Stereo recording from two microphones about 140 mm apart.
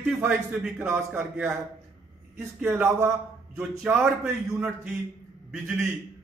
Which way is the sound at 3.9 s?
10° right (ahead or behind).